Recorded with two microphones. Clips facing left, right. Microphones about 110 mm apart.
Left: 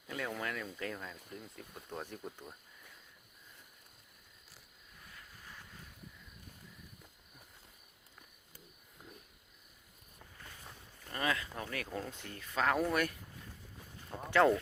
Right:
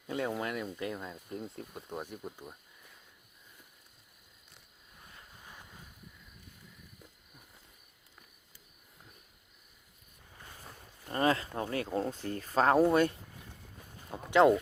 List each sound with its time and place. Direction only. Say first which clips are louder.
0.1 s speech: right 5 dB; 25° right (ahead or behind)
1.3 s speech: right 8 dB; 30° right (ahead or behind)
1.7 s speech: right 3 dB; 15° right (ahead or behind)
5.1 s a sound: right 1 dB; 20° right (ahead or behind)
11.1 s speech: right 7 dB; 35° right (ahead or behind)
14.3 s speech: right 4 dB; 15° right (ahead or behind)